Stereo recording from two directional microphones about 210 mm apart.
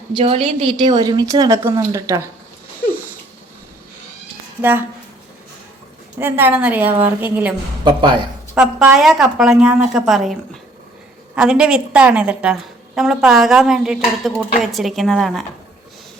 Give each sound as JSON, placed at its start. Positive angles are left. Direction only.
{"t": 0.1, "sound": "a woman's voice", "side_deg": -25}
{"t": 4.6, "sound": "a woman's voice", "side_deg": -10}
{"t": 6.1, "sound": "a woman's voice", "side_deg": -10}
{"t": 7.9, "sound": "a woman's voice", "side_deg": -20}
{"t": 8.5, "sound": "a woman's voice", "side_deg": -5}